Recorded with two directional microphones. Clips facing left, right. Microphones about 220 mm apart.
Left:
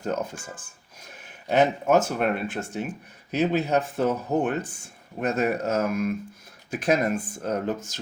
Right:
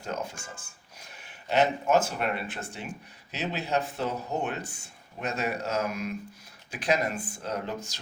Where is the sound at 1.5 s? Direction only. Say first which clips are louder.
Left 4 dB; 50° left (ahead or behind).